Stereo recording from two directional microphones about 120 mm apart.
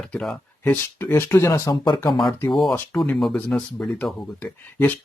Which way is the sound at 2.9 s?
15° left (ahead or behind).